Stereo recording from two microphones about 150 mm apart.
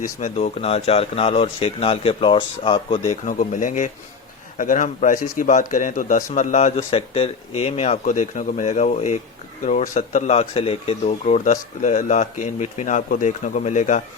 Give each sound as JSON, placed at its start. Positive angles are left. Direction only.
{"t": 0.0, "sound": "speech", "side_deg": 50}
{"t": 3.1, "sound": "speech", "side_deg": 60}